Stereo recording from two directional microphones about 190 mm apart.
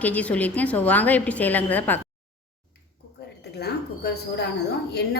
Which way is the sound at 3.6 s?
60° left (ahead or behind).